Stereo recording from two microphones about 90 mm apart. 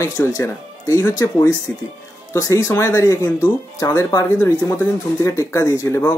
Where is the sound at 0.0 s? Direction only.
30° left (ahead or behind).